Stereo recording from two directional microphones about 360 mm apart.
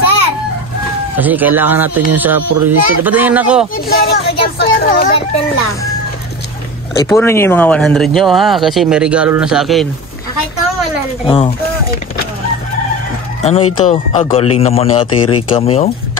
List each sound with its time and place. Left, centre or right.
1.1 s speech: centre
3.7 s speech: left
7.0 s speech: centre
11.2 s speech: centre
13.4 s speech: centre